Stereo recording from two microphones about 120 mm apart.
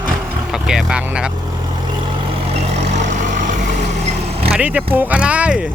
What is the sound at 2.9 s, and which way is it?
Vehicle, 90° right.